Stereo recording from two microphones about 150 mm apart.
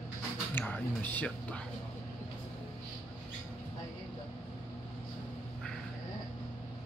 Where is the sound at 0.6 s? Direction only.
10° left (ahead or behind).